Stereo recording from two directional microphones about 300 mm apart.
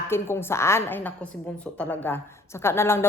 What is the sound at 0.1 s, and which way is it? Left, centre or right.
A woman's voice, centre.